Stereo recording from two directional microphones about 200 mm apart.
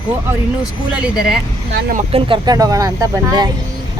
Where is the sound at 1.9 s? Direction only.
25° right (ahead or behind).